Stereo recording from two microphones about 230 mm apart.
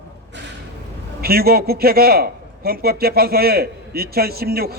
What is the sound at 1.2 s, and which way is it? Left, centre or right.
A man's voice, right.